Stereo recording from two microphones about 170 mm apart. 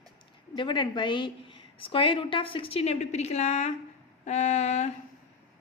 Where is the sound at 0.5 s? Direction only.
25° left (ahead or behind).